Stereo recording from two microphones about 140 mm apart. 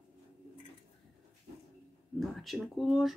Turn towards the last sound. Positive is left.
turn(degrees=0)  # may be behind; listen again after turning